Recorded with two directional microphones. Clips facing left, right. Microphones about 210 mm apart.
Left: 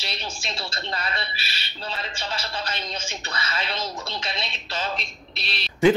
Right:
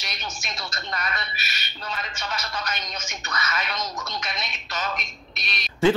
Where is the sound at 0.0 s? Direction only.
30° left (ahead or behind).